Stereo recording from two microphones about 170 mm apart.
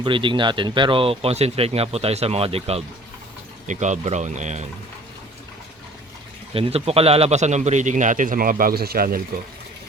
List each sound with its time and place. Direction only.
0.0 s a man's voice: 30° right (ahead or behind)
6.5 s a man's voice: 35° right (ahead or behind); by 9.2 s 60° right (ahead or behind)